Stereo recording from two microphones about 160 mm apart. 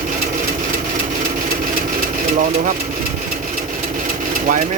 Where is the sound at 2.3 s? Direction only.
60° right (ahead or behind).